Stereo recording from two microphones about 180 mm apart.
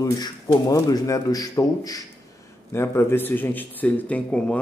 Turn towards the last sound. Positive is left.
turn(degrees=5)  # may be behind; listen again after turning